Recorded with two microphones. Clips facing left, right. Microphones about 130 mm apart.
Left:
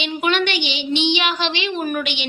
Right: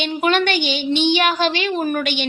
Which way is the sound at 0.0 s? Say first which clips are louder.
Right 2 dB; 40° right (ahead or behind).